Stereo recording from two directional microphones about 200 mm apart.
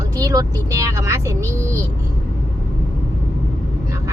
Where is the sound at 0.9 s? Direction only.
15° right (ahead or behind).